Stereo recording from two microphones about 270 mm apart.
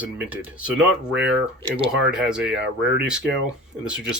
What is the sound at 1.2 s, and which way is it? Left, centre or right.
Speech, right.